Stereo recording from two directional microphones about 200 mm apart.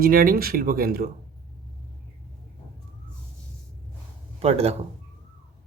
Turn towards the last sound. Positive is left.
turn(degrees=-30)  # may be behind; listen again after turning